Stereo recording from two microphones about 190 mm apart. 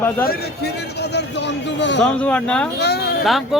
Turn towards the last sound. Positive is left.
turn(degrees=0)  # may be behind; listen again after turning